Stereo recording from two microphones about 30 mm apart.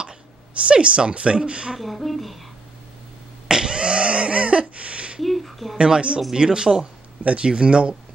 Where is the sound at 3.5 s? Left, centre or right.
Right.